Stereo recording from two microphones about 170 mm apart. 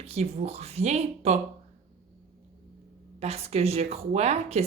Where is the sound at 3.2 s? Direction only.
35° right (ahead or behind).